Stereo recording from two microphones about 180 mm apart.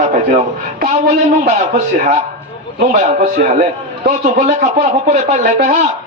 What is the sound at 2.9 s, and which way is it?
A man's voice, 40° right (ahead or behind).